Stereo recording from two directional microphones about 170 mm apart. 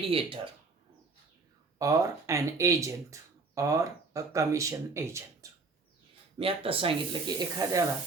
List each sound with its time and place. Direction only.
0.1 s speech: 30° right (ahead or behind)
1.8 s speech: 20° right (ahead or behind)
6.4 s speech: 35° right (ahead or behind)